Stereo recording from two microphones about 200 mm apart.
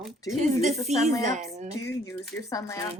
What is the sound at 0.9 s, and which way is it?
Speech, 35° right (ahead or behind).